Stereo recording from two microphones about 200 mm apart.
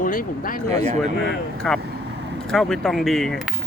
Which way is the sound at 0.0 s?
45° left (ahead or behind).